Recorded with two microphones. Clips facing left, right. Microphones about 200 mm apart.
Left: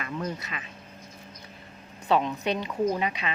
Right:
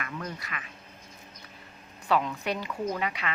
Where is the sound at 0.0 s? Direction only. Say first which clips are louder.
Left 4 dB; 25° left (ahead or behind).